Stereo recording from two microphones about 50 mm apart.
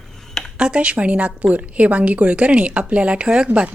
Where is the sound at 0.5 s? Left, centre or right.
Centre.